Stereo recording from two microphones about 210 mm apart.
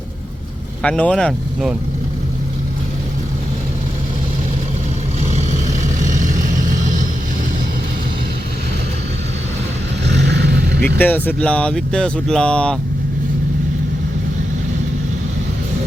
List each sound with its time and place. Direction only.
0.8 s speech: 5° left (ahead or behind)
5.2 s vehicle: 30° right (ahead or behind)
10.1 s vehicle: 55° right (ahead or behind)
10.8 s speech: 10° left (ahead or behind)